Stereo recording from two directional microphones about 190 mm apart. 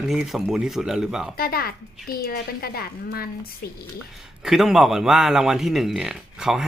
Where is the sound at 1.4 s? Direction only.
50° left (ahead or behind).